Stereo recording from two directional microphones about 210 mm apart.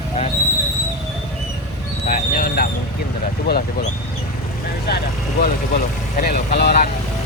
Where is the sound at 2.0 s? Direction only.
40° left (ahead or behind).